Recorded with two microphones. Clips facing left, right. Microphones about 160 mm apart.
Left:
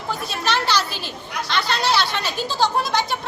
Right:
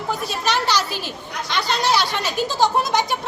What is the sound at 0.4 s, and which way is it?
Speech, 15° right (ahead or behind).